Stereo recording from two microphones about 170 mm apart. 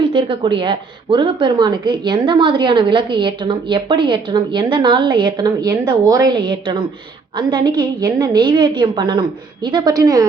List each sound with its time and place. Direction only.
0.1 s a woman's voice: 30° right (ahead or behind)